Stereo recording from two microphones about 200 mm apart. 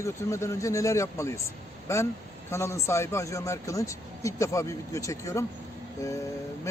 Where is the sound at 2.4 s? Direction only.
15° left (ahead or behind).